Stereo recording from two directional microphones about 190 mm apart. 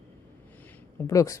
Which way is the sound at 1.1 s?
15° left (ahead or behind).